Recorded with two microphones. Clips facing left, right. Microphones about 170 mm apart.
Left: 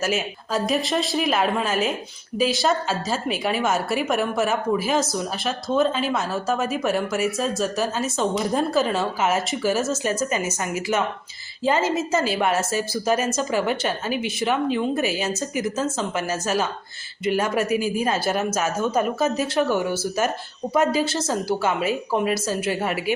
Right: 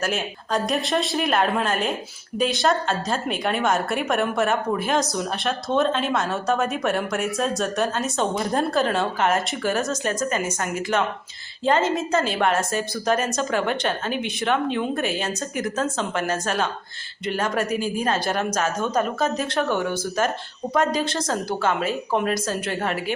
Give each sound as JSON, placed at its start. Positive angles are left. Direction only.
{"t": 0.0, "sound": "a woman's voice", "side_deg": 5}